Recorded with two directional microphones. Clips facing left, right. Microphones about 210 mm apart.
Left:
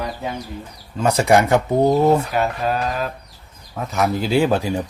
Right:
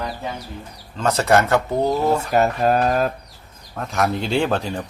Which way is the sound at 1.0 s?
10° left (ahead or behind).